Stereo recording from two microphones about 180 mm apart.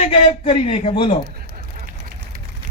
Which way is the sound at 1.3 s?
55° right (ahead or behind).